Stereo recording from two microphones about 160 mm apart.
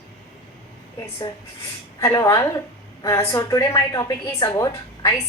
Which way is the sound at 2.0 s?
20° left (ahead or behind).